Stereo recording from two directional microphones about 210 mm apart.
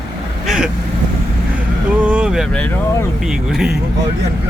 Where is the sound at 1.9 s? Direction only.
5° right (ahead or behind).